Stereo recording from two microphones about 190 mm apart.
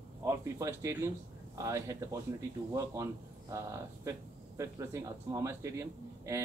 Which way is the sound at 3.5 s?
15° right (ahead or behind).